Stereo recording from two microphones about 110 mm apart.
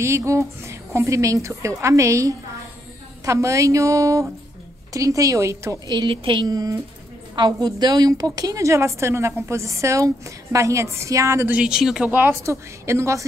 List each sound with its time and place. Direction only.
0.0 s a woman's voice: 25° right (ahead or behind)
5.9 s a woman's voice: 45° right (ahead or behind); by 11.5 s 25° right (ahead or behind)
11.5 s speech: 5° right (ahead or behind); by 13.2 s 25° right (ahead or behind)